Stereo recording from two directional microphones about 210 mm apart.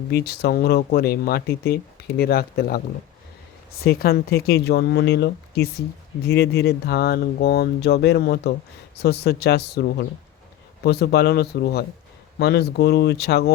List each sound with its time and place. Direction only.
0.1 s speech: 50° left (ahead or behind)
10.8 s speech: 50° left (ahead or behind)